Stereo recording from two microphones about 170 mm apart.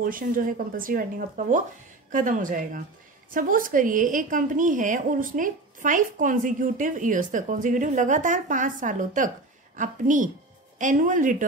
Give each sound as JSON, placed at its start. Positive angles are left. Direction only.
{"t": 0.0, "sound": "a woman's voice", "side_deg": -55}